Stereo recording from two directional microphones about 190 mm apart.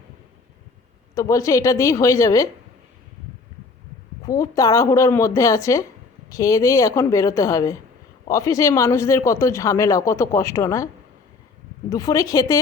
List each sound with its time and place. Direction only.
1.1 s speech: 15° left (ahead or behind)
4.3 s speech: 15° left (ahead or behind)
11.9 s speech: 15° left (ahead or behind)